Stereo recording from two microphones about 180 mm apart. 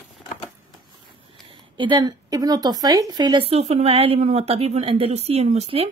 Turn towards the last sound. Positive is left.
turn(degrees=-35)  # may be behind; listen again after turning